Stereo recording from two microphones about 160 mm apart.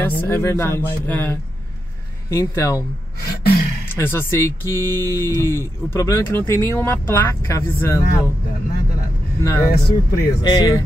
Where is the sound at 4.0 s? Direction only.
15° left (ahead or behind).